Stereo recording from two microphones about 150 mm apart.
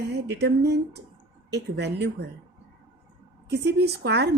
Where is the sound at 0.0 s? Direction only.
90° right.